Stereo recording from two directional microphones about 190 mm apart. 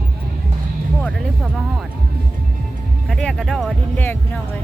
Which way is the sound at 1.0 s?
Centre (ahead or behind).